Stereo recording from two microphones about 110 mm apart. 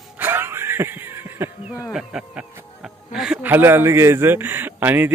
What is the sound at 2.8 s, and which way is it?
Speech, 5° right (ahead or behind).